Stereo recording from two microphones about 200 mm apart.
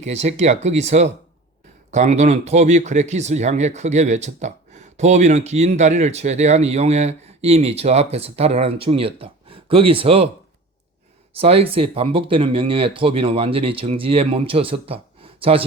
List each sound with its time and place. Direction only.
0.0 s speech: 35° right (ahead or behind)
11.3 s speech: 30° right (ahead or behind)